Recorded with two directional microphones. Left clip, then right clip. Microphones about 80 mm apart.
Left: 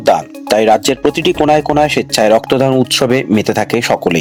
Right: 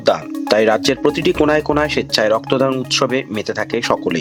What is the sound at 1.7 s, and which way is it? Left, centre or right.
Speech, left.